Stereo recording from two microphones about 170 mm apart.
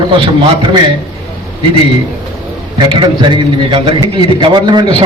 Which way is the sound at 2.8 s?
30° right (ahead or behind).